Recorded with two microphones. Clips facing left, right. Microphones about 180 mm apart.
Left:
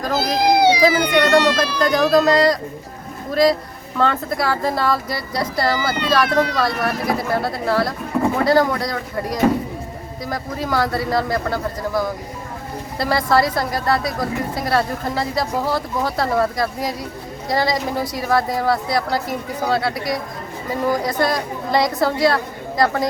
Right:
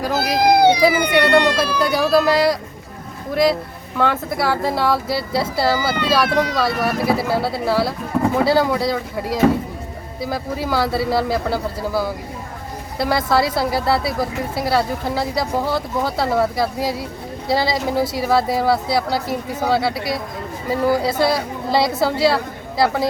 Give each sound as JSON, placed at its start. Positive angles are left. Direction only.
{"t": 0.0, "sound": "speech", "side_deg": -10}
{"t": 0.3, "sound": "speech", "side_deg": -55}
{"t": 0.8, "sound": "speech", "side_deg": -10}
{"t": 3.9, "sound": "speech", "side_deg": -5}